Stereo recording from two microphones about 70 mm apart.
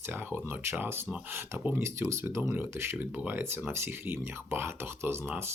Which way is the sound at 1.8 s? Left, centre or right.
Right.